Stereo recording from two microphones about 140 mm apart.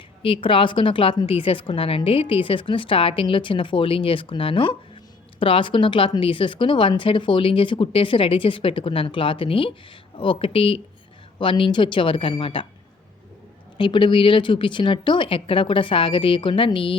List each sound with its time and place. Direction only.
0.2 s a woman's voice: 40° left (ahead or behind)
13.7 s a woman's voice: 35° left (ahead or behind)